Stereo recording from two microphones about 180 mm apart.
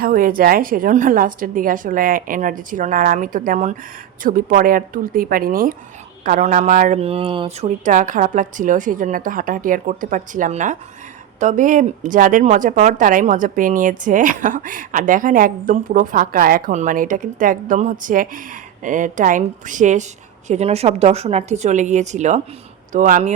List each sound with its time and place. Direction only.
0.0 s a woman's voice: 50° right (ahead or behind)